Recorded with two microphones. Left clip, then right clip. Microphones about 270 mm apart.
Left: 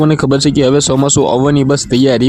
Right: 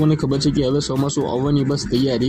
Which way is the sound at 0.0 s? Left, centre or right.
Left.